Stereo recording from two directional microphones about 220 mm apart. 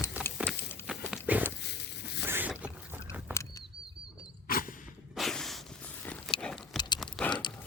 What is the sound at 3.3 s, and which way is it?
Bird flight, 10° right (ahead or behind).